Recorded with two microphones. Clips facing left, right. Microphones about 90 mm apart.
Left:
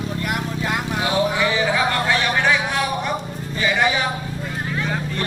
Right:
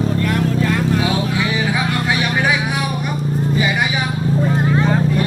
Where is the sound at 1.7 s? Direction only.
15° right (ahead or behind).